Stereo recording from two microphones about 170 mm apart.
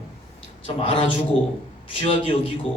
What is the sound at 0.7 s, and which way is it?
A man's voice, 30° left (ahead or behind).